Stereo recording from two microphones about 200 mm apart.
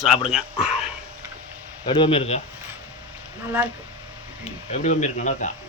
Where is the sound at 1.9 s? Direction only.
25° left (ahead or behind).